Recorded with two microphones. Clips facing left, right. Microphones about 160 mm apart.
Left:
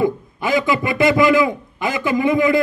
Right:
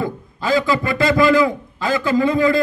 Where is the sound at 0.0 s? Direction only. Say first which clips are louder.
Left 4 dB; 20° left (ahead or behind).